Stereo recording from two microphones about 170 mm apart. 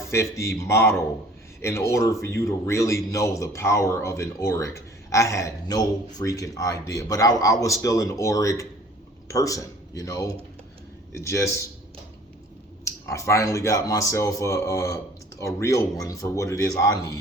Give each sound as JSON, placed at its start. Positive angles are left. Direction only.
{"t": 0.1, "sound": "speech", "side_deg": 15}
{"t": 12.8, "sound": "speech", "side_deg": 15}